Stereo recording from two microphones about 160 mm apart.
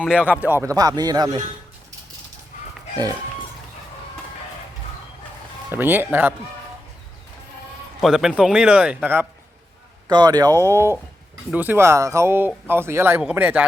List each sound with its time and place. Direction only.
0.0 s speech: 5° right (ahead or behind); by 1.4 s 25° right (ahead or behind)
5.7 s speech: 10° right (ahead or behind)
8.0 s speech: centre (ahead or behind)
10.1 s speech: 25° right (ahead or behind); by 13.7 s 10° right (ahead or behind)